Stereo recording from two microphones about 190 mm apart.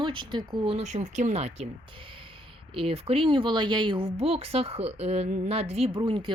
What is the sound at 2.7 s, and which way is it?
Speech, 30° right (ahead or behind).